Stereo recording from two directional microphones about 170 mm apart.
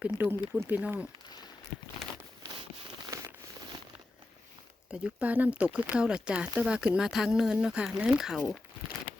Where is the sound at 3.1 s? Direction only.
20° right (ahead or behind).